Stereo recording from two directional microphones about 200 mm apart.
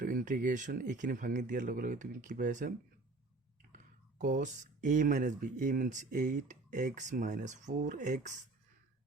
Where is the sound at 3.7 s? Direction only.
40° right (ahead or behind).